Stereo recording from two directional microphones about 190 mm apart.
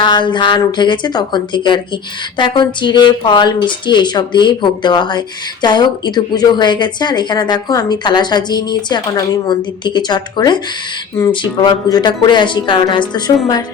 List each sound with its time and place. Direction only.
0.0 s a woman's voice: 25° left (ahead or behind)